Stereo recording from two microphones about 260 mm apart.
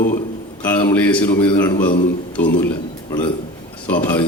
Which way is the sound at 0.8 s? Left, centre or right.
Centre.